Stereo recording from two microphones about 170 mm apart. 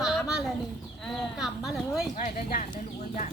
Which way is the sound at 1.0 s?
Centre (ahead or behind).